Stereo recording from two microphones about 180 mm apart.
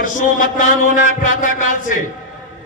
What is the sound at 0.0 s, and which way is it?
A man's voice, 45° left (ahead or behind).